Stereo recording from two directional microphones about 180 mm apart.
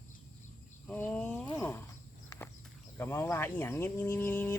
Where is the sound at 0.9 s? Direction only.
10° left (ahead or behind).